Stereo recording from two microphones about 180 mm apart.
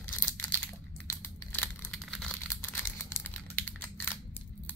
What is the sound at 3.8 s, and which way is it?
Crushing, 10° left (ahead or behind).